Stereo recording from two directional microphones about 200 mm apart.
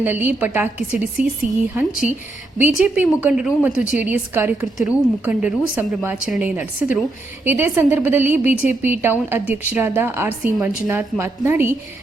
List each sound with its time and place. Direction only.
0.0 s a woman's voice: 10° right (ahead or behind)